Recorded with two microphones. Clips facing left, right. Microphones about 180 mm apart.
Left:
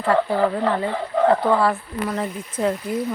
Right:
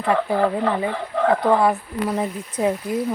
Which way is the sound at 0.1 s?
15° right (ahead or behind).